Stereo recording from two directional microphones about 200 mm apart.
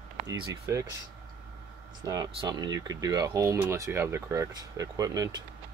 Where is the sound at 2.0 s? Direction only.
20° right (ahead or behind).